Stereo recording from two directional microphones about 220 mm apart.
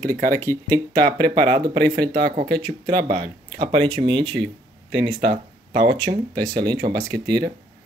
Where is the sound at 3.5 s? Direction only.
20° right (ahead or behind).